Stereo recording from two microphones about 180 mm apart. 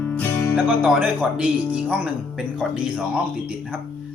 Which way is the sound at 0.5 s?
10° right (ahead or behind).